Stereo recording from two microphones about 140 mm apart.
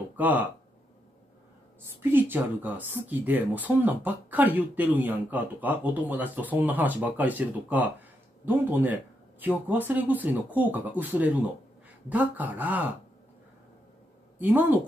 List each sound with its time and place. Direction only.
0.1 s speech: 10° right (ahead or behind)
2.0 s speech: 15° right (ahead or behind)
14.4 s speech: 15° right (ahead or behind)